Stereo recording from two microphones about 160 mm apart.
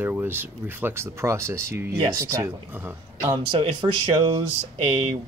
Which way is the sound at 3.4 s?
35° right (ahead or behind).